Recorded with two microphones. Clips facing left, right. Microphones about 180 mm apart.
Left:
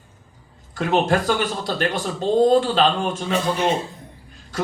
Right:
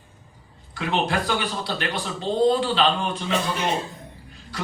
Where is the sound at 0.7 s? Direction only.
45° left (ahead or behind).